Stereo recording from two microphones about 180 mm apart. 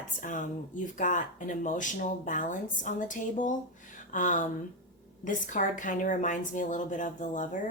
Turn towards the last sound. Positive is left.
turn(degrees=45)  # may be behind; listen again after turning